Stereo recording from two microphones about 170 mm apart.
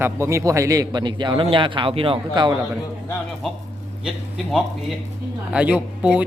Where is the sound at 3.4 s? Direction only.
Centre (ahead or behind).